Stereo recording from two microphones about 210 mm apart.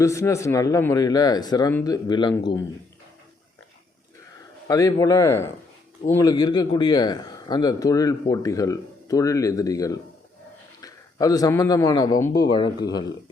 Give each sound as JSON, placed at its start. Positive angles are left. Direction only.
{"t": 0.0, "sound": "speech", "side_deg": 15}
{"t": 4.7, "sound": "a man's voice", "side_deg": 15}